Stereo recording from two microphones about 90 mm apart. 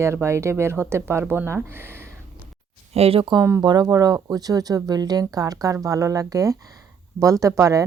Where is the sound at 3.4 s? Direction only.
35° right (ahead or behind).